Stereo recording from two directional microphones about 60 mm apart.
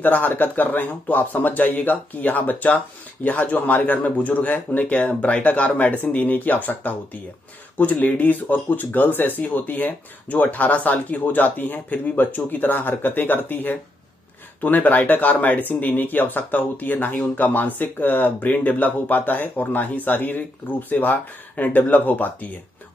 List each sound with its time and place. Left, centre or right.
0.0 s speech: left